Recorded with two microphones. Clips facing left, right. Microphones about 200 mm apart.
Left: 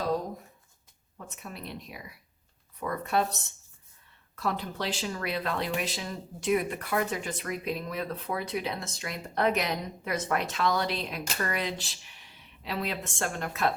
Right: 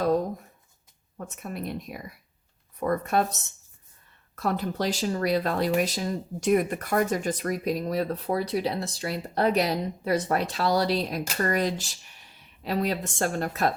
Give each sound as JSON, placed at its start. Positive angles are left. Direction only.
{"t": 1.4, "sound": "speech", "side_deg": -50}
{"t": 4.4, "sound": "speech", "side_deg": -45}